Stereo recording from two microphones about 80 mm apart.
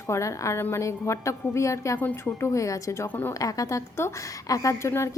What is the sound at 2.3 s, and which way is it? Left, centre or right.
Speech, left.